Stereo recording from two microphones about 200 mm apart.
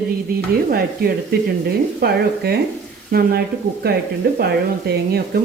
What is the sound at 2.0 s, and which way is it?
Speech, 50° right (ahead or behind).